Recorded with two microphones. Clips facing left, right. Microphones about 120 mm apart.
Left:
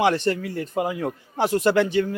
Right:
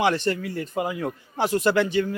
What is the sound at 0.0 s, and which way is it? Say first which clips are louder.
A man's voice: left 2 dB; 40° left (ahead or behind).